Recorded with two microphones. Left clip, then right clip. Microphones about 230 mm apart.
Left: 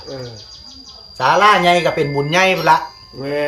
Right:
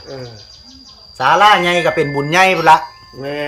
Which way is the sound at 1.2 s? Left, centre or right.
Centre.